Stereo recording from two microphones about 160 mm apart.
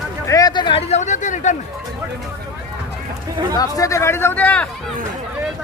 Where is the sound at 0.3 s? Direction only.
20° left (ahead or behind); by 1.5 s 50° left (ahead or behind).